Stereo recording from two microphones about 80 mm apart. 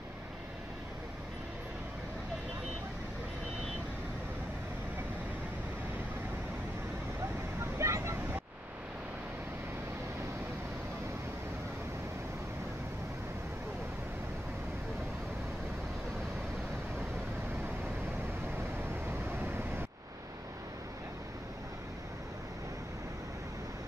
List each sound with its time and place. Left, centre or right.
7.8 s vehicle: right
18.8 s vehicle: right